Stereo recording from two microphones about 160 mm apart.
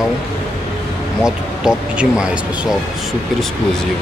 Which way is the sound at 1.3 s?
5° right (ahead or behind).